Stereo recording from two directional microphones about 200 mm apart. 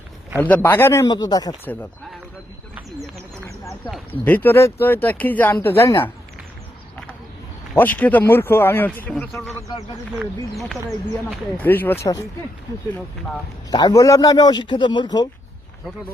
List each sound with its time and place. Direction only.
0.3 s a man's voice: 10° left (ahead or behind)
3.7 s speech: 5° left (ahead or behind)
7.8 s speech: 10° left (ahead or behind)
9.5 s speech: 15° left (ahead or behind)
10.2 s speech: centre (ahead or behind)
13.7 s a man's voice: 20° left (ahead or behind)